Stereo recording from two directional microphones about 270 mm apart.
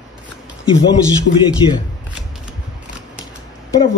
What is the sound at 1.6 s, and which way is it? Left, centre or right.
Speech, centre.